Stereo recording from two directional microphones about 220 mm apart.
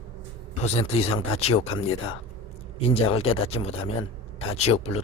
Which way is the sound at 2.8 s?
25° left (ahead or behind).